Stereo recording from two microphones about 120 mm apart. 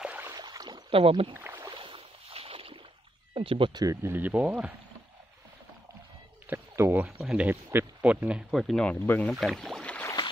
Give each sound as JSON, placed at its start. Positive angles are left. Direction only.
{"t": 0.0, "sound": "a sound", "side_deg": -10}
{"t": 0.3, "sound": "a sound", "side_deg": -30}
{"t": 0.8, "sound": "speech", "side_deg": -50}
{"t": 1.3, "sound": "rowboat", "side_deg": -15}
{"t": 1.7, "sound": "boat", "side_deg": -45}
{"t": 3.3, "sound": "speech", "side_deg": -50}
{"t": 3.8, "sound": "speech", "side_deg": -25}
{"t": 4.1, "sound": "speech", "side_deg": -15}
{"t": 6.5, "sound": "speech", "side_deg": -15}
{"t": 7.1, "sound": "speech", "side_deg": -5}
{"t": 9.0, "sound": "speech", "side_deg": 15}
{"t": 9.3, "sound": "rowboat", "side_deg": 0}
{"t": 10.0, "sound": "boat", "side_deg": 35}